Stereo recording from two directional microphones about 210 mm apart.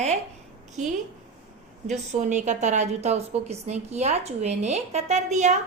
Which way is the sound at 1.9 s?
35° right (ahead or behind).